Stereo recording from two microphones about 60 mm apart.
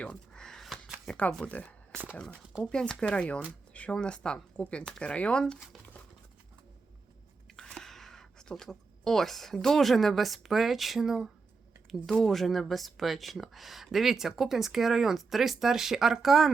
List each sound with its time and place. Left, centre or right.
0.0 s a sound: centre
1.1 s speech: centre
1.5 s speech: left
3.7 s a sound: left
3.9 s speech: centre
7.4 s speech: centre
12.0 s speech: centre